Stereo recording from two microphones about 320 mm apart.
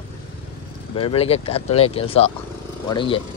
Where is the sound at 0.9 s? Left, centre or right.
Centre.